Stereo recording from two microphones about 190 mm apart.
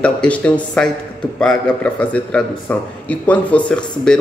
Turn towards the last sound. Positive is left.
turn(degrees=5)  # may be behind; listen again after turning